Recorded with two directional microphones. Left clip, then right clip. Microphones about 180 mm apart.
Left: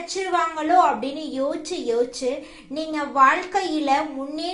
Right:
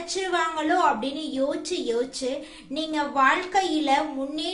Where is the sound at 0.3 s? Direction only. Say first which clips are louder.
Left 5 dB; 20° right (ahead or behind).